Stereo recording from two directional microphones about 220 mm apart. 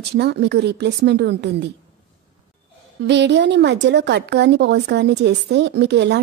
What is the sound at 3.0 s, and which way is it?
A woman's voice, 50° right (ahead or behind).